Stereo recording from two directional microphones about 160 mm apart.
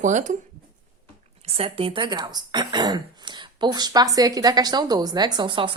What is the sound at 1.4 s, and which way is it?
Speech, 40° right (ahead or behind).